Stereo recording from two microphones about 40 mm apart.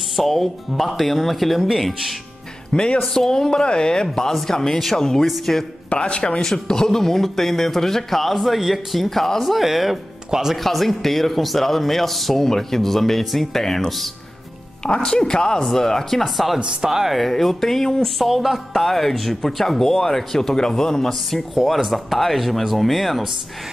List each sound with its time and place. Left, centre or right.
0.1 s a man's voice: centre
2.7 s a man's voice: centre
5.9 s a man's voice: left
6.4 s speech: centre
10.6 s a man's voice: centre
15.0 s a man's voice: centre
16.5 s speech: right
16.9 s speech: centre
17.2 s speech: centre
18.2 s a man's voice: centre